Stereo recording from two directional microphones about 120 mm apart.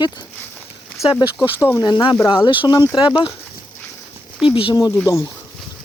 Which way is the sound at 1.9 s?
45° left (ahead or behind).